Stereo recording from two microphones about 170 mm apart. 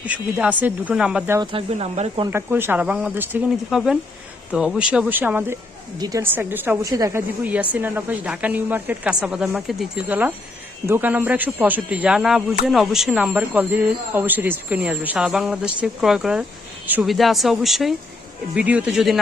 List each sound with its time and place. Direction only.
0.0 s a woman's voice: 10° right (ahead or behind)
1.4 s speech: 35° right (ahead or behind)
2.2 s a woman's voice: 15° right (ahead or behind)